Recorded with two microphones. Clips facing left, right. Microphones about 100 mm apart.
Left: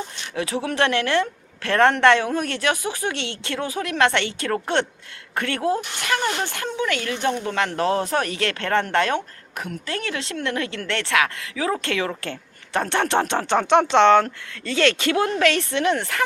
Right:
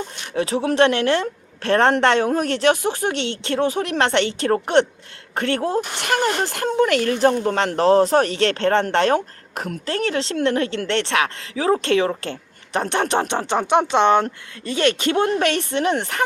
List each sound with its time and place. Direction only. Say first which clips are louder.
0.3 s a woman's voice: right 5 dB; 30° right (ahead or behind)
5.8 s a woman's voice: right 3 dB; 45° right (ahead or behind); by 16.2 s 25° right (ahead or behind)